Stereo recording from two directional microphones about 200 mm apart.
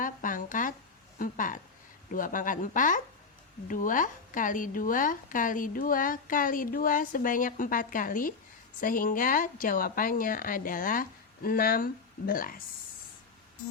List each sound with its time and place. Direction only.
0.0 s a woman's voice: 40° left (ahead or behind)